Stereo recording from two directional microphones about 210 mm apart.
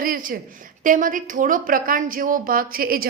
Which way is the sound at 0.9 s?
40° right (ahead or behind).